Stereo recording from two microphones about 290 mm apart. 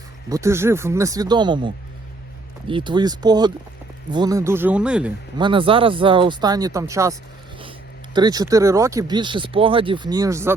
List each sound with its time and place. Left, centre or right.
0.3 s speech: centre
5.4 s speech: centre